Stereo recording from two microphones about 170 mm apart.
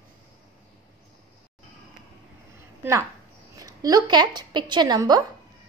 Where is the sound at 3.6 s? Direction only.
20° right (ahead or behind).